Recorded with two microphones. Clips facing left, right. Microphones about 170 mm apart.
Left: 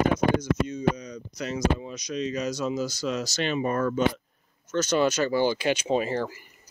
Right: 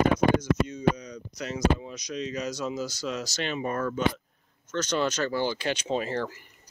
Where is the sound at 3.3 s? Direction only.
15° left (ahead or behind).